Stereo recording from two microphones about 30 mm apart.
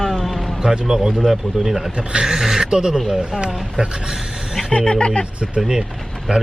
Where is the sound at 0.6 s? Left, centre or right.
Right.